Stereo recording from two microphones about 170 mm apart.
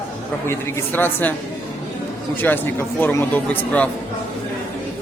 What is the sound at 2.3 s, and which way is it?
Speech, 10° left (ahead or behind).